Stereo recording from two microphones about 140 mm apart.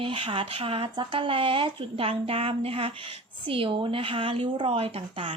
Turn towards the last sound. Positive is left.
turn(degrees=-40)  # may be behind; listen again after turning